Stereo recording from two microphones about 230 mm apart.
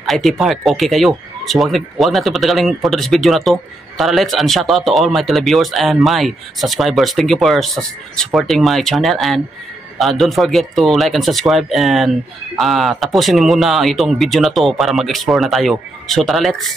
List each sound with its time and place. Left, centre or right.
0.0 s speech: centre